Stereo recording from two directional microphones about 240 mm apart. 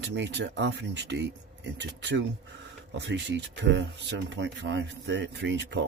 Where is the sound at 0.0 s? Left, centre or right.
Right.